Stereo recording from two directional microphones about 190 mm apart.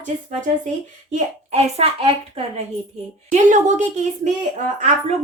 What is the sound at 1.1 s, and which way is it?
A woman's voice, 35° right (ahead or behind).